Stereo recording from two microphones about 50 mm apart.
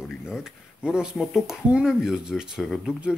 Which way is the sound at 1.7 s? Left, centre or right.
Centre.